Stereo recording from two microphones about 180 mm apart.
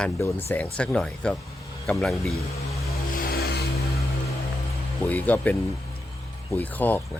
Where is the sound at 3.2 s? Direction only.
60° left (ahead or behind).